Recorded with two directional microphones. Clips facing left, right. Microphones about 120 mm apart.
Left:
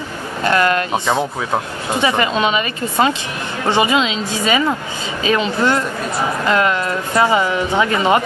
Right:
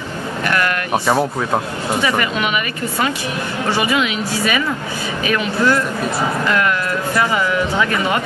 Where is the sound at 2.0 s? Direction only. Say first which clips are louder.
Left 4 dB; 25° left (ahead or behind).